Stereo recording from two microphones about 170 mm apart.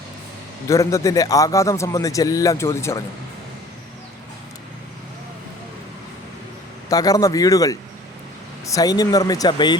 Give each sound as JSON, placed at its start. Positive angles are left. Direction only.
{"t": 0.7, "sound": "a man's voice", "side_deg": 20}
{"t": 6.9, "sound": "a man's voice", "side_deg": 20}